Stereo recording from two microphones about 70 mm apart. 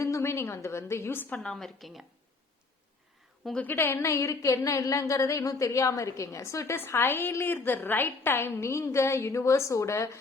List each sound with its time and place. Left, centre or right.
0.0 s a woman's voice: left
1.4 s a woman's voice: centre
3.6 s a woman's voice: left